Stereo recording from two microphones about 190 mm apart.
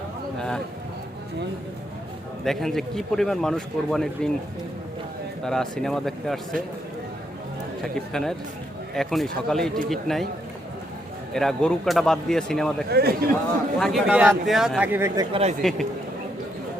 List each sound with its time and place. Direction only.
0.3 s a sound: 5° left (ahead or behind)
2.4 s a man's voice: centre (ahead or behind)
5.5 s a man's voice: 5° left (ahead or behind)
7.9 s a man's voice: 5° left (ahead or behind)
11.3 s a man's voice: 5° left (ahead or behind)
12.9 s a man's voice: 55° right (ahead or behind)
13.7 s a man's voice: centre (ahead or behind); by 15.4 s 20° right (ahead or behind)
15.6 s a man's voice: centre (ahead or behind)